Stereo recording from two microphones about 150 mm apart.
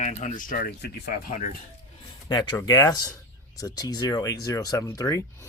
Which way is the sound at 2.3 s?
30° left (ahead or behind).